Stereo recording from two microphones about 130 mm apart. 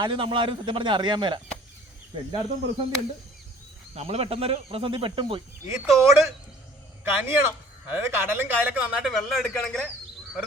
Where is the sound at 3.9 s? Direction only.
50° right (ahead or behind).